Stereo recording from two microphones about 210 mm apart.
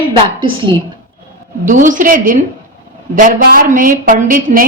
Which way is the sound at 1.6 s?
40° right (ahead or behind).